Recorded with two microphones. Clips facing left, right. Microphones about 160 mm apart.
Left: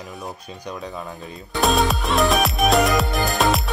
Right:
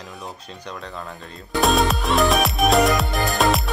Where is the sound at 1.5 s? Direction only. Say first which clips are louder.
Right 1 dB; centre (ahead or behind).